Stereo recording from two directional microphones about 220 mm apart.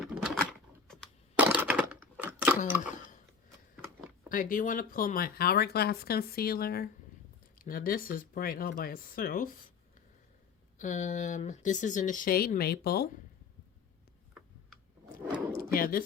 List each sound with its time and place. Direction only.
0.0 s typewriter: centre (ahead or behind)
0.9 s a sound: 5° left (ahead or behind)
1.5 s typewriter: 5° right (ahead or behind)
2.6 s speech: 10° right (ahead or behind)
4.3 s speech: 40° left (ahead or behind)
10.8 s speech: 35° left (ahead or behind)
15.5 s drawer open or close: 40° left (ahead or behind)